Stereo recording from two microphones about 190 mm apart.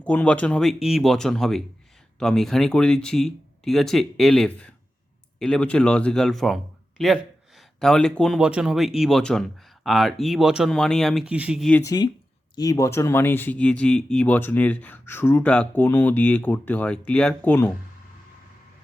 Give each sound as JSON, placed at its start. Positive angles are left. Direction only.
{"t": 0.0, "sound": "speech", "side_deg": 5}
{"t": 11.7, "sound": "speech", "side_deg": 15}